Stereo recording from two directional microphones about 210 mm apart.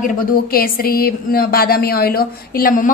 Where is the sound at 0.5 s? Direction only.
45° left (ahead or behind).